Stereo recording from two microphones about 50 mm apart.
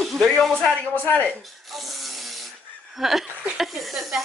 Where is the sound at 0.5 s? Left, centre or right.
Centre.